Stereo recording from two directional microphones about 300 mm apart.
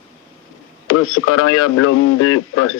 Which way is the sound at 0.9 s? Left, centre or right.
Left.